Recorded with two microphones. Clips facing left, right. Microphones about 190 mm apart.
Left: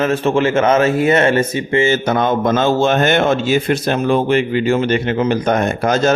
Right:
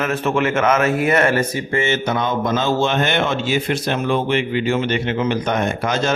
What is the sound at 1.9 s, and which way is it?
A man's voice, 50° left (ahead or behind).